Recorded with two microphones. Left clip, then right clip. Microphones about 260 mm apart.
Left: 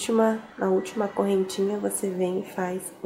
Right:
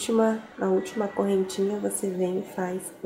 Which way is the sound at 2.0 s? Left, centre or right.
Right.